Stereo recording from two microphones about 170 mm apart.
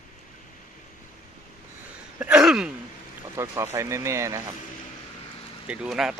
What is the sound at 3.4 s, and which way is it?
Speech, 15° right (ahead or behind).